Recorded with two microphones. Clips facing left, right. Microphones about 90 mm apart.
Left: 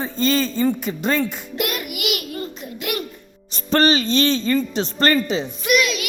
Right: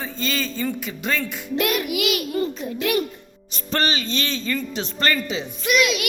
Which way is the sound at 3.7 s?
40° left (ahead or behind).